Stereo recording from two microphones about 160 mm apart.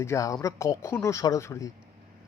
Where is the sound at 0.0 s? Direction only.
20° left (ahead or behind).